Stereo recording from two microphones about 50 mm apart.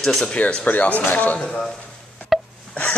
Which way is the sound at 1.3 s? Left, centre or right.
Centre.